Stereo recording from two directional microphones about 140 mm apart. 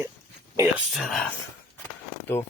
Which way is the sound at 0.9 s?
5° left (ahead or behind).